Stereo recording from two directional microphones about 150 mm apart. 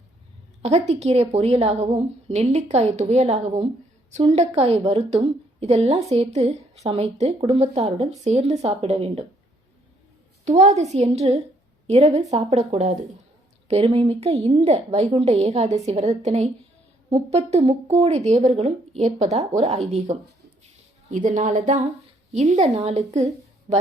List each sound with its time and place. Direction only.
0.6 s a woman's voice: 45° right (ahead or behind)
10.4 s a woman's voice: 50° right (ahead or behind)
21.1 s a woman's voice: 60° right (ahead or behind)